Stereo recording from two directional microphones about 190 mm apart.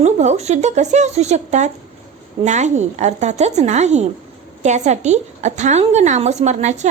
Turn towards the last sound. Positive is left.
turn(degrees=-40)  # may be behind; listen again after turning